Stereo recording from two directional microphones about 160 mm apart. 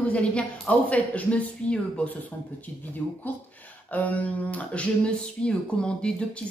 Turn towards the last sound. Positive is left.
turn(degrees=5)  # may be behind; listen again after turning